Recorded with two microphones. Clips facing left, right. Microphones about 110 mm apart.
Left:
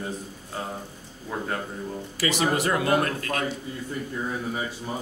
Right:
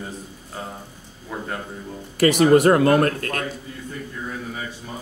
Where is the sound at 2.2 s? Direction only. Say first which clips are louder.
Right 10 dB; 50° right (ahead or behind).